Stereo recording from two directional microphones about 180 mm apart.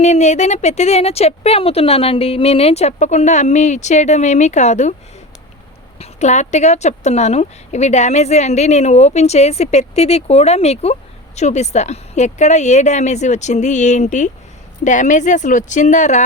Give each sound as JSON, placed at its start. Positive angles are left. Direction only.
{"t": 0.0, "sound": "speech", "side_deg": 40}
{"t": 6.0, "sound": "speech", "side_deg": 40}